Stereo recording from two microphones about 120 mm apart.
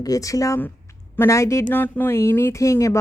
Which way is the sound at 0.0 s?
30° left (ahead or behind).